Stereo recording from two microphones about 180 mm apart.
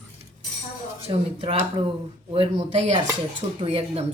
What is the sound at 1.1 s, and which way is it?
Speech, 30° right (ahead or behind).